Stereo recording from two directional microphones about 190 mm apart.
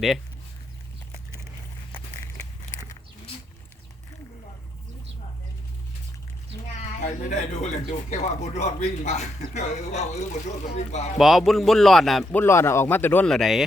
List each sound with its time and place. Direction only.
7.0 s speech: 40° left (ahead or behind)
11.2 s speech: centre (ahead or behind)